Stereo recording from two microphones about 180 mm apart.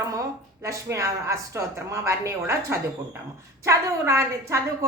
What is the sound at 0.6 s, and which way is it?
A woman's voice, 15° right (ahead or behind).